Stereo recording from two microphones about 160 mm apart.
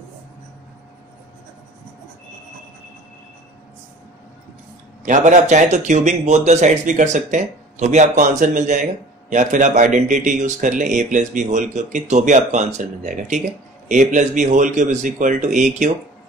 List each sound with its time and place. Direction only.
5.0 s a man's voice: 50° right (ahead or behind)